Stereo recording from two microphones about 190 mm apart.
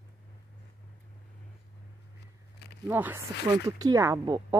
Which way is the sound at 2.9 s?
10° right (ahead or behind).